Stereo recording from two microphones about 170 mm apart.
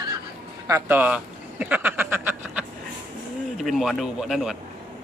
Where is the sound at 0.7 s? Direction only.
20° right (ahead or behind).